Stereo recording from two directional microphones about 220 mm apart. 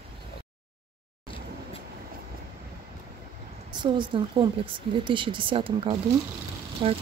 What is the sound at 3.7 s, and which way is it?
Speech, 20° right (ahead or behind).